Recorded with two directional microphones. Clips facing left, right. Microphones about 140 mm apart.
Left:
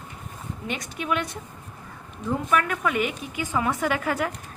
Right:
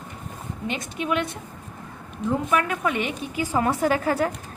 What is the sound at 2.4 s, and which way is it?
A woman's voice, 25° right (ahead or behind).